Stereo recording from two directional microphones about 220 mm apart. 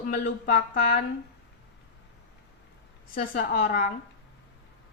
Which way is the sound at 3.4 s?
40° left (ahead or behind).